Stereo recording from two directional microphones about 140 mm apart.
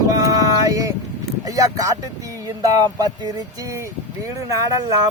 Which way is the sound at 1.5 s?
25° right (ahead or behind).